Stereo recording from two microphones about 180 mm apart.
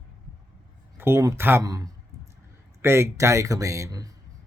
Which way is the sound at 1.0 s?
15° right (ahead or behind).